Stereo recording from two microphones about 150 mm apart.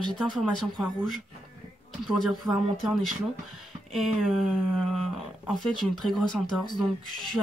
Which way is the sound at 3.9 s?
Centre (ahead or behind).